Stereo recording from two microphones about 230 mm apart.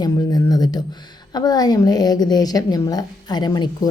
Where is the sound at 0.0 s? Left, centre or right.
Centre.